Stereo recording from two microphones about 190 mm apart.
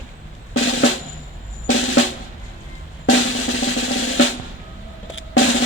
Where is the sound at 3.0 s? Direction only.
90° left.